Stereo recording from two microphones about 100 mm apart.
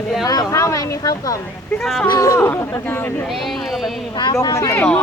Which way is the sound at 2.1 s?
35° left (ahead or behind).